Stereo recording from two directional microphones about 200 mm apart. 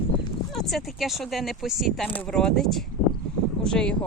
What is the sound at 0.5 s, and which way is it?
Speech, centre (ahead or behind).